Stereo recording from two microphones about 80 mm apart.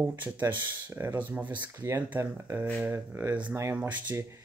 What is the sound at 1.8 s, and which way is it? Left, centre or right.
Speech, right.